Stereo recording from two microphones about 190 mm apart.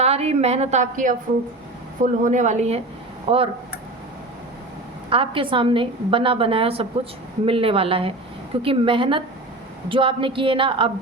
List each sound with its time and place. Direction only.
0.0 s a woman's voice: 35° right (ahead or behind)
2.2 s a woman's voice: 40° right (ahead or behind)
5.0 s a woman's voice: 30° right (ahead or behind)